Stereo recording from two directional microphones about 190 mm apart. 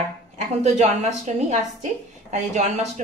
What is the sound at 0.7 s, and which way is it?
A woman's voice, 35° right (ahead or behind).